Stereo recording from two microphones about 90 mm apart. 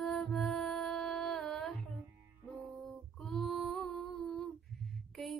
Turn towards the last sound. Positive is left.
turn(degrees=0)  # may be behind; listen again after turning